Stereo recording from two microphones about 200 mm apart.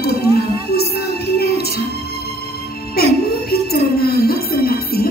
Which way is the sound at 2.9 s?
50° left (ahead or behind).